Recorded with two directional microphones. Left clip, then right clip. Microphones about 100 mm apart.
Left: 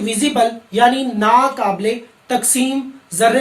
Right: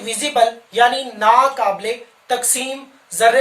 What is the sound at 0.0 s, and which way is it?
Speech, 40° right (ahead or behind).